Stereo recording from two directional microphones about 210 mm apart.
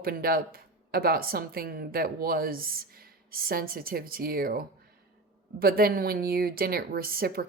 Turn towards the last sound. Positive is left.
turn(degrees=-45)  # may be behind; listen again after turning